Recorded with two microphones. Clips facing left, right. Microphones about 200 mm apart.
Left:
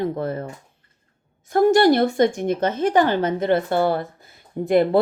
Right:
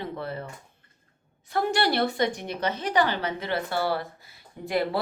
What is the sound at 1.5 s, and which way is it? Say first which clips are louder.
A woman's voice: left 10 dB; 45° left (ahead or behind).